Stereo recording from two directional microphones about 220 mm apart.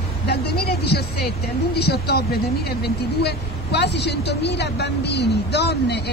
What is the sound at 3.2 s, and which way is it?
Speech, 50° left (ahead or behind).